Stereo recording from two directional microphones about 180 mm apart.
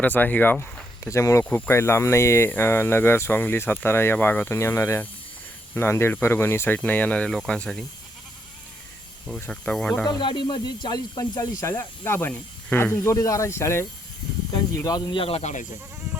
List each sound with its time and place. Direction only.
0.0 s speech: 10° left (ahead or behind)
9.2 s speech: 5° left (ahead or behind)
10.1 s speech: 25° left (ahead or behind)